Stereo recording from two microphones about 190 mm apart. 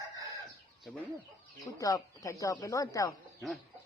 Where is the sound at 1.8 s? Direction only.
20° left (ahead or behind).